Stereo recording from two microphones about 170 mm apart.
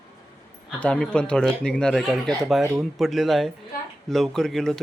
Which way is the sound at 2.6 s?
15° right (ahead or behind).